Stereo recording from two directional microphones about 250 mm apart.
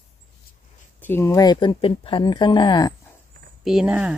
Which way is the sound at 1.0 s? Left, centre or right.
Centre.